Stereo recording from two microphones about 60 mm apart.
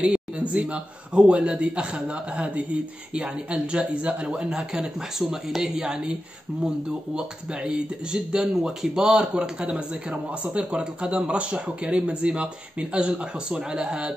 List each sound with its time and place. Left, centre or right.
0.0 s speech: centre
7.2 s speech: centre